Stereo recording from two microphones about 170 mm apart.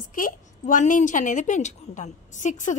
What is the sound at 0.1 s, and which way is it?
A woman's voice, 50° left (ahead or behind).